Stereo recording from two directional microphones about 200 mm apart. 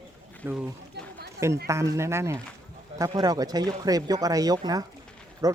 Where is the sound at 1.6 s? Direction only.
15° right (ahead or behind).